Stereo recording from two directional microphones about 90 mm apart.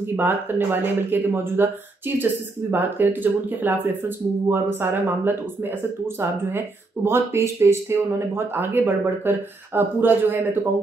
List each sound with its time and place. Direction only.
0.1 s speech: 25° right (ahead or behind)
7.1 s speech: 30° right (ahead or behind)